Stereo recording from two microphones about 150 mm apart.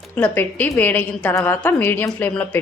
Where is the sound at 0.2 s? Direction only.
10° left (ahead or behind).